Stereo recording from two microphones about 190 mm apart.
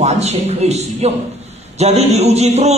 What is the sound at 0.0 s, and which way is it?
A man's voice, 35° right (ahead or behind).